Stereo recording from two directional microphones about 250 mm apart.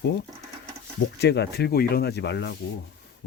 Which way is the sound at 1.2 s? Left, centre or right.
Left.